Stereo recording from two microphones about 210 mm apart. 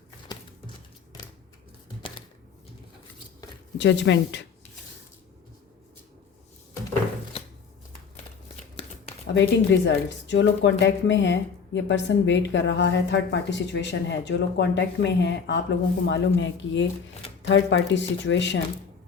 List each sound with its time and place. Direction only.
0.3 s a sound: 20° left (ahead or behind)
3.8 s speech: 60° left (ahead or behind)
9.2 s speech: 55° left (ahead or behind)